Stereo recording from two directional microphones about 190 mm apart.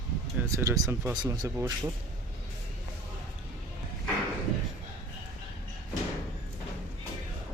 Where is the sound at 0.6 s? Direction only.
15° right (ahead or behind).